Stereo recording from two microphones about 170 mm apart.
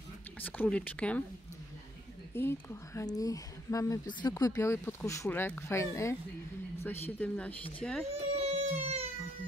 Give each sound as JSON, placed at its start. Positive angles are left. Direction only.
{"t": 0.4, "sound": "speech", "side_deg": 10}
{"t": 2.3, "sound": "speech", "side_deg": 15}
{"t": 7.2, "sound": "speech", "side_deg": 10}
{"t": 8.1, "sound": "baby cry", "side_deg": -35}